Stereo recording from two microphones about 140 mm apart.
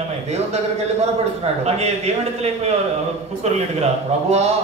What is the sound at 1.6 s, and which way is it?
A man's voice, 50° right (ahead or behind).